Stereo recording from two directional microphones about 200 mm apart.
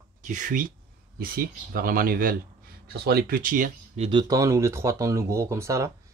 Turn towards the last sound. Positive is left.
turn(degrees=-15)  # may be behind; listen again after turning